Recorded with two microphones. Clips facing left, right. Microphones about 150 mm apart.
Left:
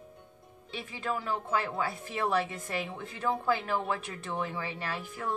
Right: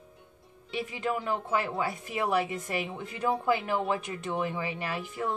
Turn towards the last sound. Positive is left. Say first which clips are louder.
# right 3 dB
turn(degrees=-15)  # may be behind; listen again after turning